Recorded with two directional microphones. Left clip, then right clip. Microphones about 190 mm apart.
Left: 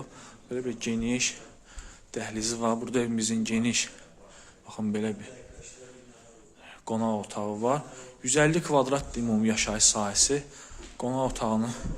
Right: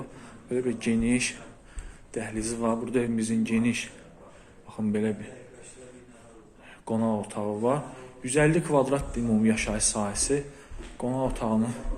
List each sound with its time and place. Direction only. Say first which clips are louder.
0.5 s speech: right 4 dB; 10° left (ahead or behind)
2.1 s a man's voice: even; 30° left (ahead or behind)
6.8 s a man's voice: right 1 dB; 20° left (ahead or behind)